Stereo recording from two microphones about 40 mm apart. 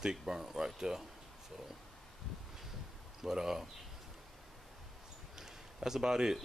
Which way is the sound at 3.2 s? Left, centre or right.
Centre.